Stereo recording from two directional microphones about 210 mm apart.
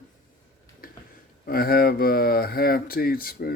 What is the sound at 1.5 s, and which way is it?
Speech, 45° left (ahead or behind).